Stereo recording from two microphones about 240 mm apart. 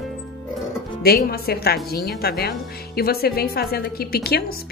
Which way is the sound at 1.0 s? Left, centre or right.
Left.